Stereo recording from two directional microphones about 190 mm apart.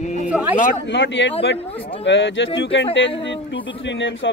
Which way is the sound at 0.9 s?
70° left (ahead or behind).